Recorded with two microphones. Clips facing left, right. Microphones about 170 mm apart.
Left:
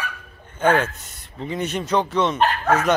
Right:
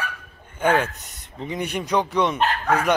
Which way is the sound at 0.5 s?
15° right (ahead or behind).